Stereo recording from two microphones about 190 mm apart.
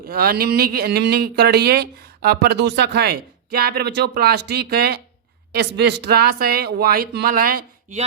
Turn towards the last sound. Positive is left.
turn(degrees=-50)  # may be behind; listen again after turning